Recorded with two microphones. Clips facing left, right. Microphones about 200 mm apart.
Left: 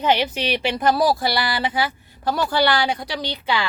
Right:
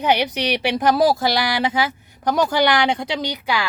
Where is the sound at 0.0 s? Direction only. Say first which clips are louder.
Right 1 dB; 15° right (ahead or behind).